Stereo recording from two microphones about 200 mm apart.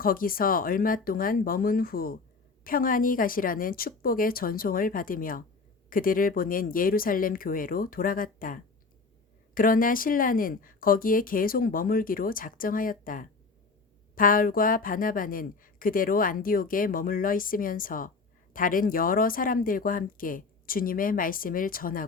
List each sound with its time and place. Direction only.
0.0 s speech: 45° left (ahead or behind)